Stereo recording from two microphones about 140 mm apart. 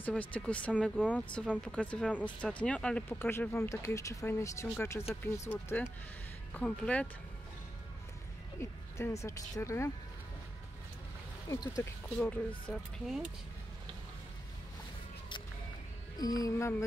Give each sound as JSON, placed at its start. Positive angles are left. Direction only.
{"t": 0.0, "sound": "speech", "side_deg": 10}
{"t": 8.5, "sound": "speech", "side_deg": 20}
{"t": 11.4, "sound": "speech", "side_deg": 25}
{"t": 13.0, "sound": "speech", "side_deg": 0}
{"t": 16.2, "sound": "speech", "side_deg": 25}